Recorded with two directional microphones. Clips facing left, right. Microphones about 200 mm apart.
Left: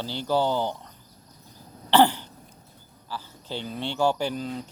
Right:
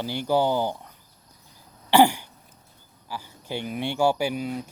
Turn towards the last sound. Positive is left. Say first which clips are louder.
# right 2 dB
turn(degrees=-10)  # may be behind; listen again after turning